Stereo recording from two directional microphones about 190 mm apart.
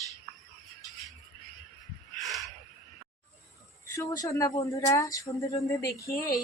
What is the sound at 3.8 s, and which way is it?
Speech, 15° left (ahead or behind).